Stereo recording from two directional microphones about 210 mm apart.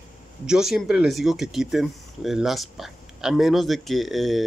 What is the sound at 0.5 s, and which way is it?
Speech, centre (ahead or behind).